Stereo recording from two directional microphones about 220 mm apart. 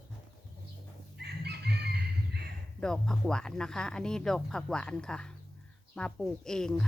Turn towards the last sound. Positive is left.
turn(degrees=5)  # may be behind; listen again after turning